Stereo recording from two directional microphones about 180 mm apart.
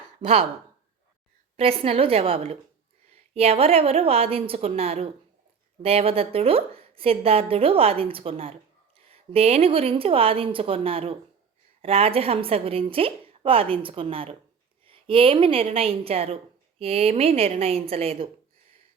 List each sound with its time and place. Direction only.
0.2 s speech: 30° right (ahead or behind)
1.5 s a woman's voice: 30° right (ahead or behind)